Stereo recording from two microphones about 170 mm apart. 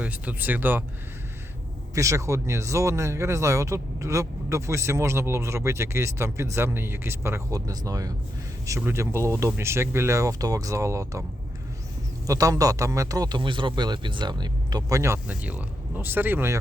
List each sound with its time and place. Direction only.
0.0 s speech: 10° right (ahead or behind)
2.0 s speech: 20° right (ahead or behind)
12.2 s a man's voice: 20° right (ahead or behind)